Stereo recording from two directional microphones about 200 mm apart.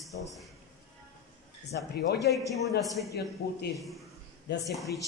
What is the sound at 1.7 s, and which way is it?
Speech, 55° left (ahead or behind).